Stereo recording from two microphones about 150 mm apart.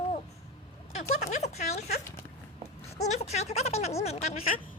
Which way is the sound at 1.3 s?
45° left (ahead or behind).